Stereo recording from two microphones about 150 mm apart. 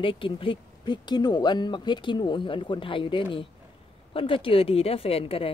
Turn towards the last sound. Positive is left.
turn(degrees=40)  # may be behind; listen again after turning